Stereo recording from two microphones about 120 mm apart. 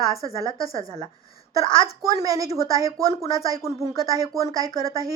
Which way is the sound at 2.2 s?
30° right (ahead or behind).